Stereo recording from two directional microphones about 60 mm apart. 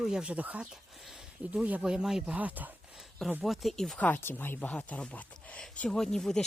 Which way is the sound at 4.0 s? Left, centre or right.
Left.